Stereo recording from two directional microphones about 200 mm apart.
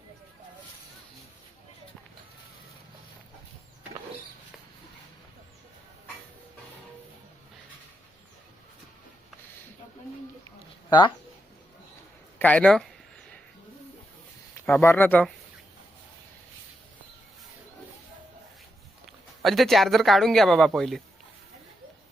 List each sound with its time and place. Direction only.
10.8 s speech: 20° left (ahead or behind)
12.4 s speech: 5° left (ahead or behind)
14.7 s speech: 10° left (ahead or behind)
19.4 s speech: centre (ahead or behind)